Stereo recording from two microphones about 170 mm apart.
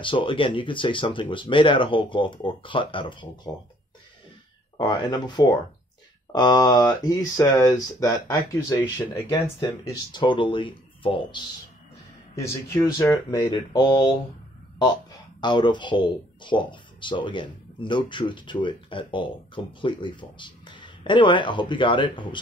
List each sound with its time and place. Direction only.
0.0 s speech: 30° left (ahead or behind)
4.7 s speech: 25° left (ahead or behind)
12.4 s speech: 20° left (ahead or behind)
15.4 s speech: 25° left (ahead or behind)